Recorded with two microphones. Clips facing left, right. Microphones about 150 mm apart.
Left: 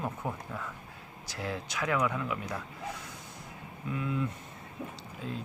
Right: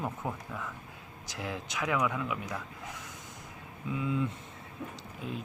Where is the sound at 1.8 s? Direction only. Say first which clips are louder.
Even; centre (ahead or behind).